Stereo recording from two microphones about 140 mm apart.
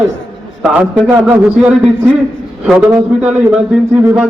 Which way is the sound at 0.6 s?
10° right (ahead or behind).